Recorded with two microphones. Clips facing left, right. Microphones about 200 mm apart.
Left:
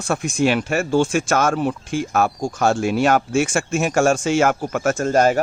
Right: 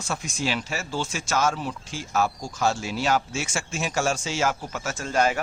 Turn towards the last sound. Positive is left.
turn(degrees=40)  # may be behind; listen again after turning